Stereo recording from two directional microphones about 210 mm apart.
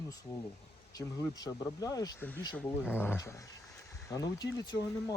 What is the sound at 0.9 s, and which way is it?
Speech, 15° left (ahead or behind).